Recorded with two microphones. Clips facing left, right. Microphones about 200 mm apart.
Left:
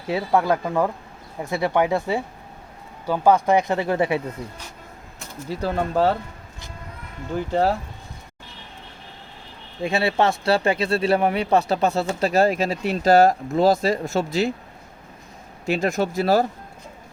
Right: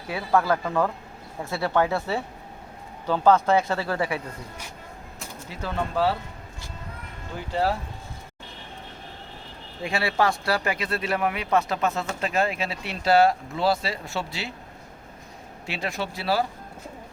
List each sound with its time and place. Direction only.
0.1 s speech: 20° left (ahead or behind)
5.5 s speech: 40° left (ahead or behind)
9.8 s speech: 25° left (ahead or behind); by 14.5 s 45° left (ahead or behind)
15.6 s speech: 45° left (ahead or behind)